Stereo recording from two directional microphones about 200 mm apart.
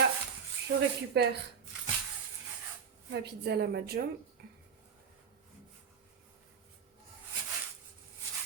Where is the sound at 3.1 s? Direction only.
55° right (ahead or behind).